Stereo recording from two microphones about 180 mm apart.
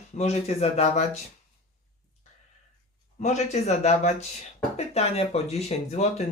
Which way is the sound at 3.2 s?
40° left (ahead or behind).